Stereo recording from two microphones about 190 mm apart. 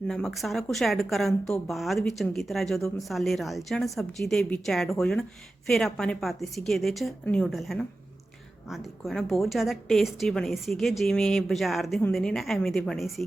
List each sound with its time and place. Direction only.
0.1 s speech: centre (ahead or behind)